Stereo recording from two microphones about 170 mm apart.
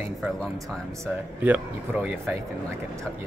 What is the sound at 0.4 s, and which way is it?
Speech, centre (ahead or behind).